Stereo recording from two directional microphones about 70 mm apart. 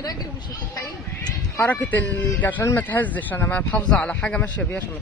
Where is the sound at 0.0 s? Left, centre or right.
Left.